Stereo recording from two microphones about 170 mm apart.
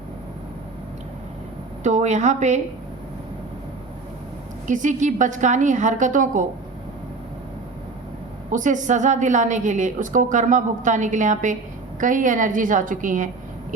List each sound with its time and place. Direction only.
1.8 s a woman's voice: 45° right (ahead or behind)
4.6 s a woman's voice: 50° right (ahead or behind)
8.5 s a woman's voice: 45° right (ahead or behind)